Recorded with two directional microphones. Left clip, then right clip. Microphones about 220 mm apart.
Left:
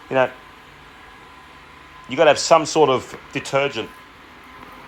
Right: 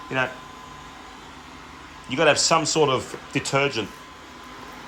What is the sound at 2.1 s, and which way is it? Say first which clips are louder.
Speech: left 5 dB; 10° right (ahead or behind).